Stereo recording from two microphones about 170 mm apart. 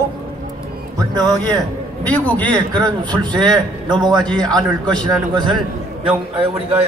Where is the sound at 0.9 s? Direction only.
20° right (ahead or behind).